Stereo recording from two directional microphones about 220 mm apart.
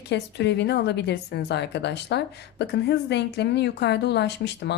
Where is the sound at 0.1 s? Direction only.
50° left (ahead or behind).